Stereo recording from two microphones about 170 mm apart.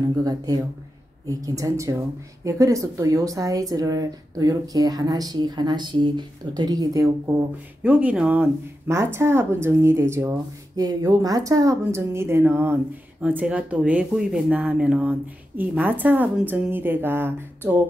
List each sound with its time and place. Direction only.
0.2 s a woman's voice: 20° right (ahead or behind)
7.8 s speech: 10° right (ahead or behind)